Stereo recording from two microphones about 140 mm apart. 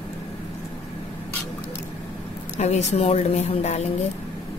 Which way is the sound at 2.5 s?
55° left (ahead or behind).